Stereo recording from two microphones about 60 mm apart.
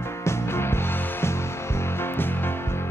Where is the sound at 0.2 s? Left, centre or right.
Left.